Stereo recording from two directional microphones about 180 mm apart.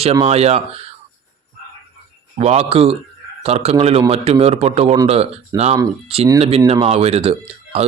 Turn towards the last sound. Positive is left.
turn(degrees=-35)  # may be behind; listen again after turning